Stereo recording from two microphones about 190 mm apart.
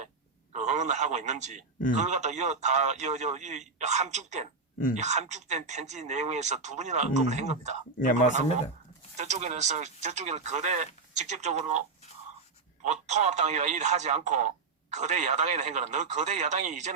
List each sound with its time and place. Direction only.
0.5 s a man's voice: 35° right (ahead or behind)
9.1 s a man's voice: 40° right (ahead or behind)
12.8 s a man's voice: 35° right (ahead or behind)